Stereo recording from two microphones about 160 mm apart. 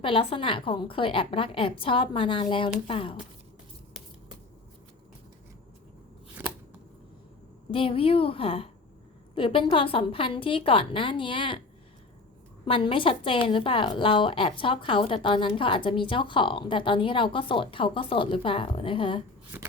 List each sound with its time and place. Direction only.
0.0 s a woman's voice: 35° left (ahead or behind)
7.7 s a woman's voice: 35° left (ahead or behind)
12.6 s a woman's voice: 35° left (ahead or behind)
19.5 s shuffling cards: 10° right (ahead or behind)